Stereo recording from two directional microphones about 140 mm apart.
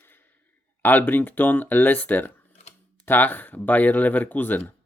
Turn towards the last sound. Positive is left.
turn(degrees=10)  # may be behind; listen again after turning